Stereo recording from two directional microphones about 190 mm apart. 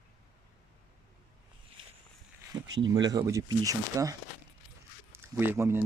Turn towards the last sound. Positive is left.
turn(degrees=-15)  # may be behind; listen again after turning